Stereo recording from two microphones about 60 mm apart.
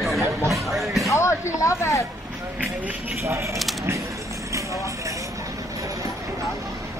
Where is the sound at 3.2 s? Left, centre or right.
Right.